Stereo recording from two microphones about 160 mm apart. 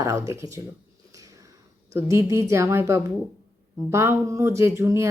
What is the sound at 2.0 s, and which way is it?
Speech, 15° right (ahead or behind).